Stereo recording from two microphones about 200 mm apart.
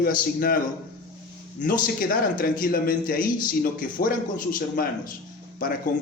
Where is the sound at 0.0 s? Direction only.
45° left (ahead or behind).